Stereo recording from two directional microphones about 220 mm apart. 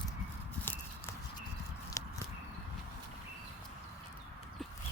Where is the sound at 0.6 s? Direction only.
10° left (ahead or behind).